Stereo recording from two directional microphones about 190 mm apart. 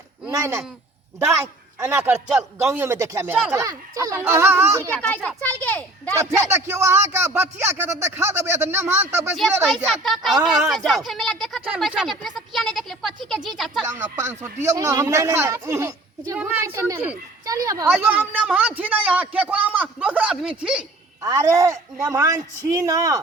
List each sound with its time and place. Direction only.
0.3 s a man's voice: 15° right (ahead or behind)
4.9 s a child's voice: 5° left (ahead or behind)
6.1 s a man's voice: 15° right (ahead or behind)
9.6 s a woman's voice: centre (ahead or behind)
13.8 s a man's voice: 15° right (ahead or behind)
21.2 s a man's voice: 20° right (ahead or behind)